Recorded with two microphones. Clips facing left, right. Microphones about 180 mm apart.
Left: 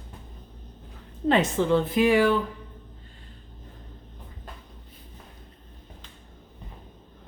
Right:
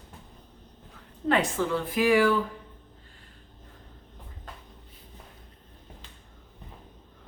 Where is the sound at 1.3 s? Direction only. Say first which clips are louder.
Left 4 dB; 25° left (ahead or behind).